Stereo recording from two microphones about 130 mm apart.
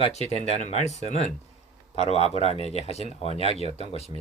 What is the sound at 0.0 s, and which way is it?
Speech, 55° left (ahead or behind).